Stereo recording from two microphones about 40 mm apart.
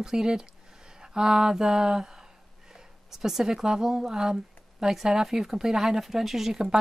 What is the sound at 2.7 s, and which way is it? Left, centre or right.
Speech, centre.